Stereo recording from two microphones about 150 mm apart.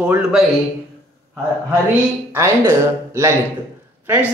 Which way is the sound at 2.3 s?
20° right (ahead or behind).